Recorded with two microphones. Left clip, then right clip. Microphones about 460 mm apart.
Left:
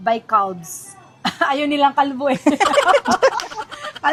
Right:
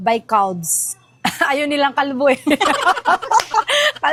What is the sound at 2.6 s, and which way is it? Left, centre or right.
Speech, centre.